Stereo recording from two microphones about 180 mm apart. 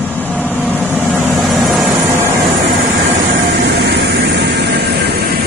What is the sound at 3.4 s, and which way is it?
Vehicle, 70° right (ahead or behind).